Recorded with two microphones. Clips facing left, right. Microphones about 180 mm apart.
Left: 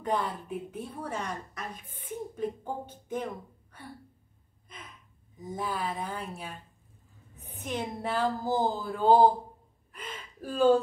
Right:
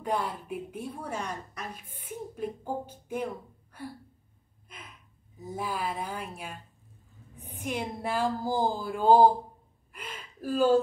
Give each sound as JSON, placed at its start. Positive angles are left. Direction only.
{"t": 0.0, "sound": "a woman's voice", "side_deg": -10}
{"t": 3.7, "sound": "a sound", "side_deg": -10}
{"t": 4.6, "sound": "gasp", "side_deg": -10}
{"t": 5.4, "sound": "a woman's voice", "side_deg": -10}
{"t": 9.9, "sound": "gasp", "side_deg": -10}